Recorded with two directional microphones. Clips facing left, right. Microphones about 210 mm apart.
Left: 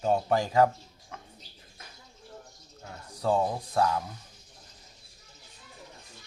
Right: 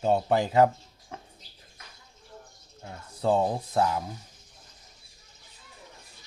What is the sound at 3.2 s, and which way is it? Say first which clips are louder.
Speech: right 2 dB; 25° right (ahead or behind).